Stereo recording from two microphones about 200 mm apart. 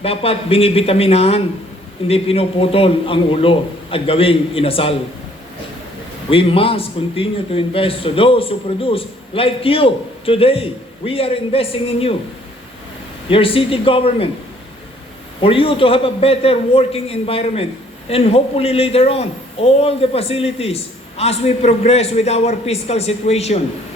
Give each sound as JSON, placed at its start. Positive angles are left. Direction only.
{"t": 0.0, "sound": "a man's voice", "side_deg": 30}
{"t": 6.3, "sound": "a man's voice", "side_deg": 30}
{"t": 13.2, "sound": "a man's voice", "side_deg": 25}
{"t": 15.4, "sound": "a man's voice", "side_deg": 25}